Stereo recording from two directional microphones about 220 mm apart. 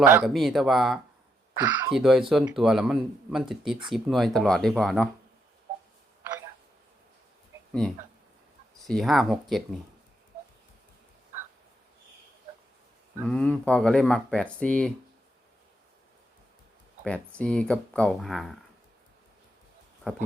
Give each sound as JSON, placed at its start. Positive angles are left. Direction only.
{"t": 0.0, "sound": "speech", "side_deg": -10}
{"t": 8.9, "sound": "speech", "side_deg": 0}
{"t": 13.2, "sound": "speech", "side_deg": 5}
{"t": 17.0, "sound": "speech", "side_deg": 5}